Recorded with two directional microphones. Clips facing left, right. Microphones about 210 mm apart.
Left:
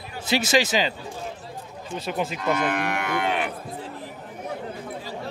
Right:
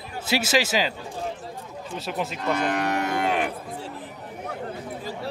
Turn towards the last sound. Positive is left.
turn(degrees=-40)  # may be behind; listen again after turning